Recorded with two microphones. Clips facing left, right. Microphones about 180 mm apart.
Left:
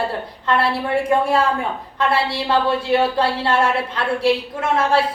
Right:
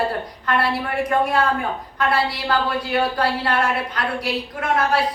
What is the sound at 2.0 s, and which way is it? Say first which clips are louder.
A woman's voice: left 2 dB; 25° left (ahead or behind).